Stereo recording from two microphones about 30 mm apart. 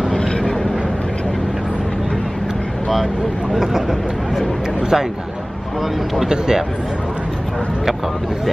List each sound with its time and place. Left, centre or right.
0.1 s vehicle: centre
3.5 s speech: centre
6.2 s speech: right